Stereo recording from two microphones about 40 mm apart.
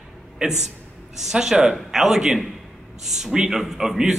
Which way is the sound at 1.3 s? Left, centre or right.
Centre.